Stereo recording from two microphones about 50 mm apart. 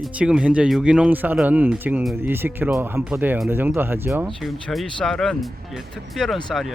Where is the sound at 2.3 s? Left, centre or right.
Right.